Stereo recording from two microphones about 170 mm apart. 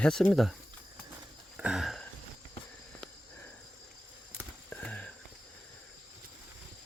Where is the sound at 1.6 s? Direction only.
Centre (ahead or behind).